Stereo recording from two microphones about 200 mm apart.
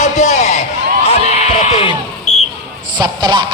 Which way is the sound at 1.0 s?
35° left (ahead or behind).